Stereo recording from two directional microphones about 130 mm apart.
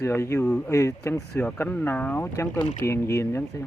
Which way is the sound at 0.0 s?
20° left (ahead or behind).